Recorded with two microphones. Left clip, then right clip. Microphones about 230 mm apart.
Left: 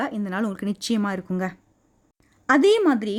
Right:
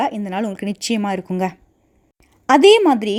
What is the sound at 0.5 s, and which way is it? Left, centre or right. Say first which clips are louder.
Speech: right 4 dB; left.